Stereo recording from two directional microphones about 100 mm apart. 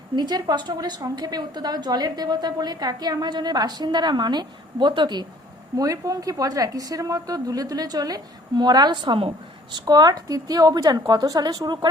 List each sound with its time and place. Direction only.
0.2 s a woman's voice: 45° right (ahead or behind)
5.7 s a woman's voice: 35° right (ahead or behind); by 9.3 s 60° right (ahead or behind)
9.7 s a woman's voice: 40° right (ahead or behind)